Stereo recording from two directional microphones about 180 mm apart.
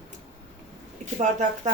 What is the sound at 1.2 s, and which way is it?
Speech, 45° right (ahead or behind).